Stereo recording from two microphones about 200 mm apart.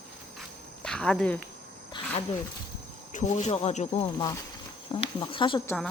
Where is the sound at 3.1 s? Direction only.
35° left (ahead or behind).